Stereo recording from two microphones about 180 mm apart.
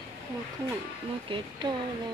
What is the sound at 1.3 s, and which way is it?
Speech, 25° right (ahead or behind).